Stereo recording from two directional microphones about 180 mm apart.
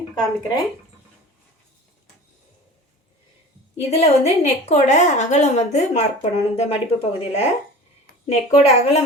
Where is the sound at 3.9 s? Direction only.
35° left (ahead or behind).